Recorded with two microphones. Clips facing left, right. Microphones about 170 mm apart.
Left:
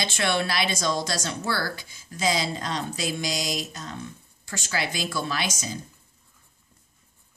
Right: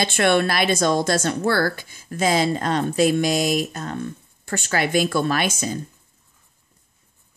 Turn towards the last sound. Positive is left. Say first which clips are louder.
# right 7 dB
turn(degrees=-60)  # may be behind; listen again after turning